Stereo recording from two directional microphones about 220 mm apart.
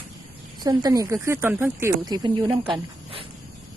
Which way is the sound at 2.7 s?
25° right (ahead or behind).